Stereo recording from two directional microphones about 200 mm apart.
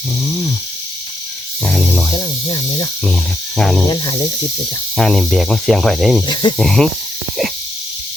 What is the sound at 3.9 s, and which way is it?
Speech, 20° left (ahead or behind).